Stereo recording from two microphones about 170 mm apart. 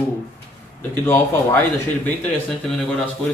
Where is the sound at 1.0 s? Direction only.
15° left (ahead or behind).